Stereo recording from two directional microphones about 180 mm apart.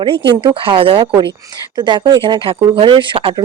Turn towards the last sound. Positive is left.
turn(degrees=-30)  # may be behind; listen again after turning